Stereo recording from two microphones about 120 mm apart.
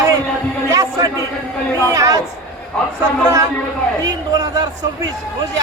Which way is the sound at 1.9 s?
30° right (ahead or behind).